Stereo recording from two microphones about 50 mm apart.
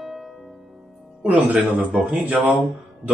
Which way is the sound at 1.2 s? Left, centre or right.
Right.